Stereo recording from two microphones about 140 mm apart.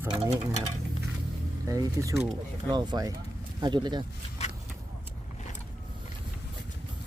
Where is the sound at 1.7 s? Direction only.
25° right (ahead or behind).